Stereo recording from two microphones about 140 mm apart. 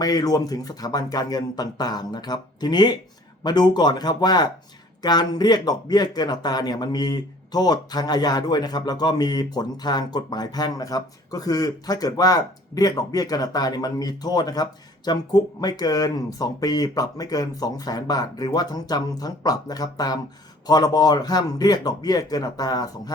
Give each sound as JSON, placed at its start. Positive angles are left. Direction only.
{"t": 0.0, "sound": "speech", "side_deg": 25}